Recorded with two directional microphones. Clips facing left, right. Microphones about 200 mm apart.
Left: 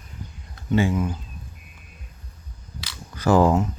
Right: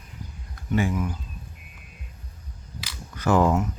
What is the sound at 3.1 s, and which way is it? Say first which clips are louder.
Speech: left 3 dB; 35° left (ahead or behind).